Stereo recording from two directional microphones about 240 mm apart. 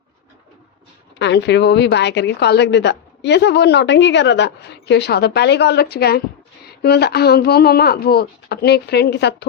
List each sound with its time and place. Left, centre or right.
1.2 s a woman's voice: left